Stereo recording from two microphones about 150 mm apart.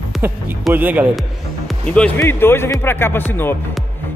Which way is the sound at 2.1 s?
15° left (ahead or behind).